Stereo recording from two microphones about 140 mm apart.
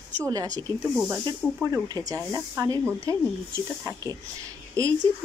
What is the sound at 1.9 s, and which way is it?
Speech, 25° right (ahead or behind).